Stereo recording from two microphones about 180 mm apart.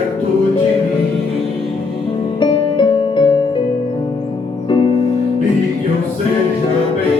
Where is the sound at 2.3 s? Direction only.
30° left (ahead or behind).